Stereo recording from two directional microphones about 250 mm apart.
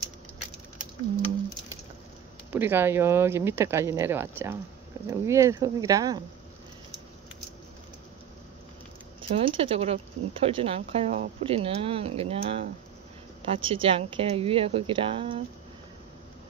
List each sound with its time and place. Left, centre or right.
2.5 s speech: centre
9.3 s speech: right
13.7 s speech: right